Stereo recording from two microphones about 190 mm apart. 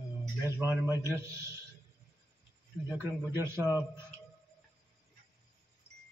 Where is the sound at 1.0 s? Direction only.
15° right (ahead or behind).